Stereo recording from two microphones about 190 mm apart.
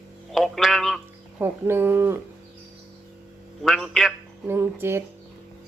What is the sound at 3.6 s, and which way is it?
Speech, centre (ahead or behind).